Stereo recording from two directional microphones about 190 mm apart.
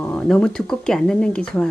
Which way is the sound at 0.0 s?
5° left (ahead or behind).